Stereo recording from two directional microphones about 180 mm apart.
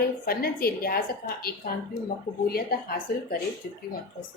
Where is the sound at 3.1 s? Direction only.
60° left (ahead or behind).